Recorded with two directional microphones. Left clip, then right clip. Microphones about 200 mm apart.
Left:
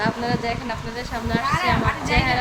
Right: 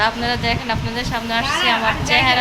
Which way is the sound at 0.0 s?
5° right (ahead or behind).